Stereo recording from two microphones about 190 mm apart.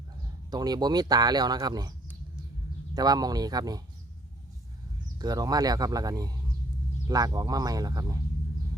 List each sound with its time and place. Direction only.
0.5 s speech: 20° right (ahead or behind)
2.9 s speech: 20° right (ahead or behind)
5.2 s speech: 20° right (ahead or behind)